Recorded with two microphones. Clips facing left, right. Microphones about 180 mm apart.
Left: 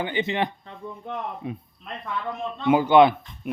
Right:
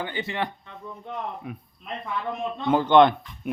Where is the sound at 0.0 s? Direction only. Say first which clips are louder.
Left 4 dB; 20° left (ahead or behind).